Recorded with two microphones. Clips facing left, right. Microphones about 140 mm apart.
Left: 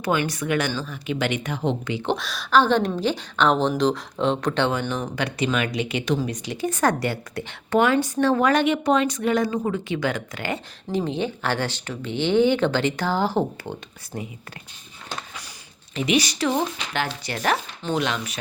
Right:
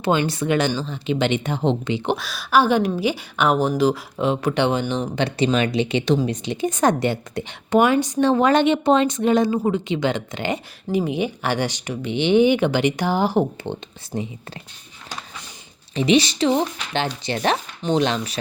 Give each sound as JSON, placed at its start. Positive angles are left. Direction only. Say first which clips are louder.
{"t": 0.0, "sound": "a woman's voice", "louder": "right 3 dB", "side_deg": -25}
{"t": 2.0, "sound": "a woman's voice", "louder": "right 1 dB", "side_deg": -5}
{"t": 10.9, "sound": "a woman's voice", "louder": "right 3 dB", "side_deg": -10}
{"t": 16.0, "sound": "a woman's voice", "louder": "right 5 dB", "side_deg": -25}